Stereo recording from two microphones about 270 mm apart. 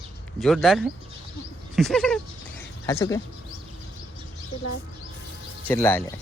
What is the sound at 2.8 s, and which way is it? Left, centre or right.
Speech, centre.